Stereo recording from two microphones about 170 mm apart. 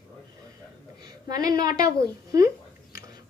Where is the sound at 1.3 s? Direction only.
20° right (ahead or behind).